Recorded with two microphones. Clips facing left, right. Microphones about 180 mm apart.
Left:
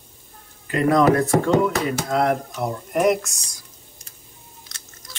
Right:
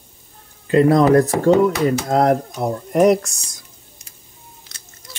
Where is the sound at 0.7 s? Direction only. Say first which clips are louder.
Right 4 dB; 35° right (ahead or behind).